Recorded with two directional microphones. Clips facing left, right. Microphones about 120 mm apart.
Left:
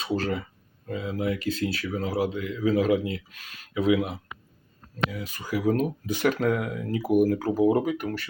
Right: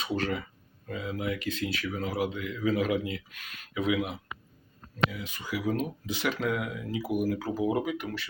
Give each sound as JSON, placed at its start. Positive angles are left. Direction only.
{"t": 0.0, "sound": "speech", "side_deg": 30}